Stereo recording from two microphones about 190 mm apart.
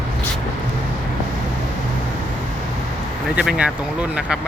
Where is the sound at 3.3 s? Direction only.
5° right (ahead or behind).